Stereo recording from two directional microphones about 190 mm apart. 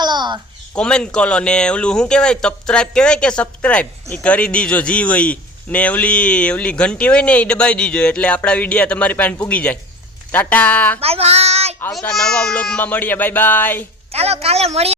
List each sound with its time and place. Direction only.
0.0 s a sound: 25° right (ahead or behind)
0.8 s speech: 5° left (ahead or behind)
11.0 s child singing: 30° right (ahead or behind)
11.9 s speech: centre (ahead or behind)
14.1 s a woman's voice: 35° right (ahead or behind)